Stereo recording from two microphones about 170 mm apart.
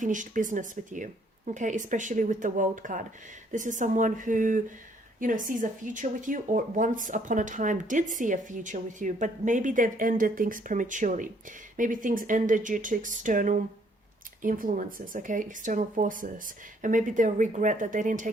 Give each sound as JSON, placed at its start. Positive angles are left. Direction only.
{"t": 0.0, "sound": "speech", "side_deg": -50}